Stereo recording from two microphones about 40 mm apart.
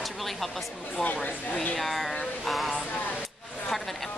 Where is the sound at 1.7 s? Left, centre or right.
Centre.